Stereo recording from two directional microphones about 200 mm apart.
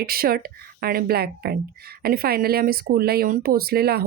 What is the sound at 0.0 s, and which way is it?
Speech, 50° right (ahead or behind).